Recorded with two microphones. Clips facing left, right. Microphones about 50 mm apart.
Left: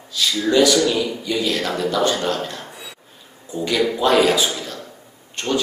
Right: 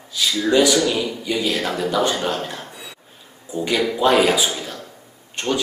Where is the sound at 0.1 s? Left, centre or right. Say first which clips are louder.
Even; centre.